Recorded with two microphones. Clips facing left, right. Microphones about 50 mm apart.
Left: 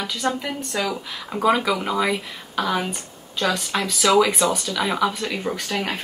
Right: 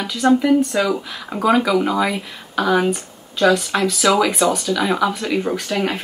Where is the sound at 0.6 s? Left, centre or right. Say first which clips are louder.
Right 9 dB; right.